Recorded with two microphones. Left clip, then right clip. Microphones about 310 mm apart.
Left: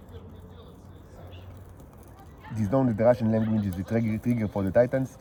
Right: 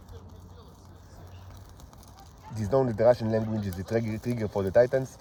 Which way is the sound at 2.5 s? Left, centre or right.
Right.